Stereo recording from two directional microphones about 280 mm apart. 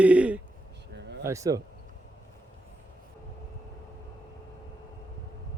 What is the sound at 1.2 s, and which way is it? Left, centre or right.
Speech, centre.